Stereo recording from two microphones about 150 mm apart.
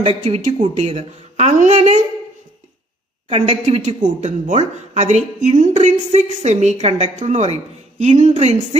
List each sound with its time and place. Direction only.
0.0 s speech: 40° right (ahead or behind)
3.3 s speech: 45° right (ahead or behind)